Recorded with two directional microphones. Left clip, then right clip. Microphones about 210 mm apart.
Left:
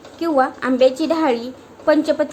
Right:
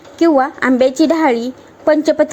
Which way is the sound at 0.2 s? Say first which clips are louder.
Right 5 dB; 30° right (ahead or behind).